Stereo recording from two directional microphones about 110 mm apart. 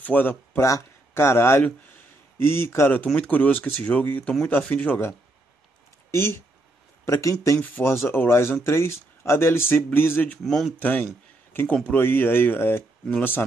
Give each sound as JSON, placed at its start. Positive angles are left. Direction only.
{"t": 0.0, "sound": "speech", "side_deg": 15}
{"t": 0.7, "sound": "speech", "side_deg": 25}
{"t": 7.1, "sound": "speech", "side_deg": 30}
{"t": 7.6, "sound": "speech", "side_deg": 20}
{"t": 10.4, "sound": "speech", "side_deg": 0}
{"t": 10.8, "sound": "speech", "side_deg": 15}